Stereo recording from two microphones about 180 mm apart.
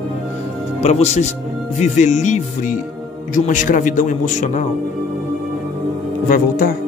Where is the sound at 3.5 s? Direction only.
45° left (ahead or behind).